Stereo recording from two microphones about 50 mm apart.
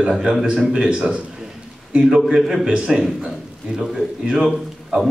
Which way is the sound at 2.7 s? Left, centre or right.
Centre.